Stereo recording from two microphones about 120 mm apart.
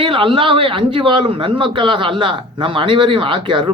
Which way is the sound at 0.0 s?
45° right (ahead or behind).